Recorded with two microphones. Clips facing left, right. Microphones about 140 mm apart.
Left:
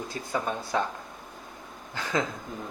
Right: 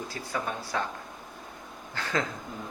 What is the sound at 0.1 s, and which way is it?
Speech, 20° left (ahead or behind).